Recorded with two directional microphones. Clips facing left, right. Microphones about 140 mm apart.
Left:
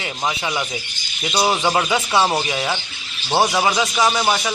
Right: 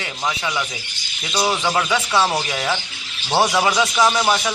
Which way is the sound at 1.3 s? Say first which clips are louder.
Left 2 dB; 25° left (ahead or behind).